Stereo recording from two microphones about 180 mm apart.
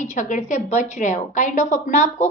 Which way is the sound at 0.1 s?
45° left (ahead or behind).